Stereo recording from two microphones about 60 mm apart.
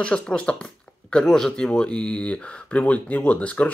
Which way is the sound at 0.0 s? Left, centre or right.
Centre.